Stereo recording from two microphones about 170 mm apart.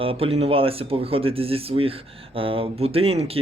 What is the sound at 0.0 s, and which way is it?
Speech, 35° right (ahead or behind).